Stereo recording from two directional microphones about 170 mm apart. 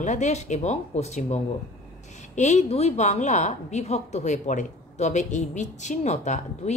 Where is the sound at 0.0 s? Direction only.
45° left (ahead or behind).